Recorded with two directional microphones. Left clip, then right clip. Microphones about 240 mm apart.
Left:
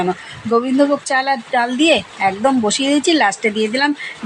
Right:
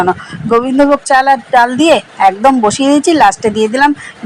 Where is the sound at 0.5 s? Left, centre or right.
Centre.